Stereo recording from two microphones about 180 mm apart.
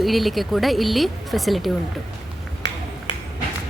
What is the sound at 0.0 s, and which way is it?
A woman's voice, centre (ahead or behind).